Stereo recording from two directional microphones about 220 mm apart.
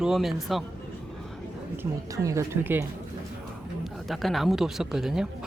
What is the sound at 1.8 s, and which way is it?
Speech, 15° right (ahead or behind).